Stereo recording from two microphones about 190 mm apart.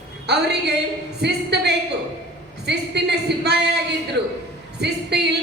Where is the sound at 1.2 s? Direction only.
65° right (ahead or behind).